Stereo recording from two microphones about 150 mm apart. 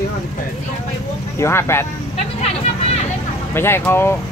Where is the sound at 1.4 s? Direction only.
15° left (ahead or behind).